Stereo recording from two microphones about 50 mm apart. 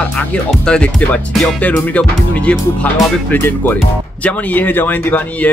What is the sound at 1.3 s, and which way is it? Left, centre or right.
Speech, centre.